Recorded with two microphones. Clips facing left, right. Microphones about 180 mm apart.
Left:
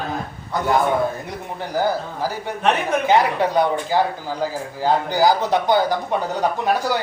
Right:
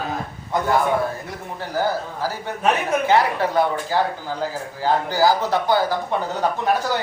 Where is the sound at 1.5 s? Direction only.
15° left (ahead or behind).